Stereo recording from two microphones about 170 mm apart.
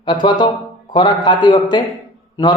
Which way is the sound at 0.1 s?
25° left (ahead or behind).